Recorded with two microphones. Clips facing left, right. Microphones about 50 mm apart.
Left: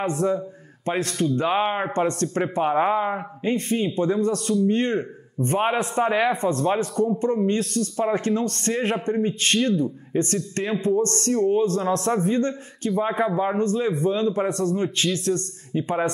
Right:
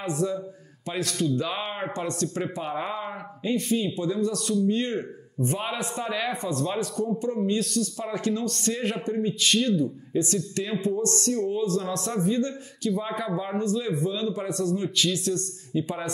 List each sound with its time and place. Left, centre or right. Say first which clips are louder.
0.0 s speech: left 5 dB; left
2.0 s speech: left 5 dB; left
8.7 s a man's voice: left 5 dB; left
9.0 s speech: left 3 dB; left